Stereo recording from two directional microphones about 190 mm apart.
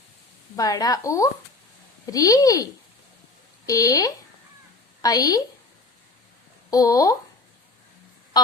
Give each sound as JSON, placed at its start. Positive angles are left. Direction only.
{"t": 0.5, "sound": "speech", "side_deg": 20}
{"t": 3.7, "sound": "speech", "side_deg": 20}
{"t": 6.7, "sound": "speech", "side_deg": 20}